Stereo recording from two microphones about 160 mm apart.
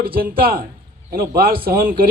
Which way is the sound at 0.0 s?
70° right (ahead or behind).